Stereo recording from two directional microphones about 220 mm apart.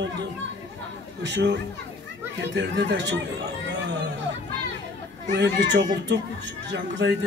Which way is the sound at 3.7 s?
50° right (ahead or behind).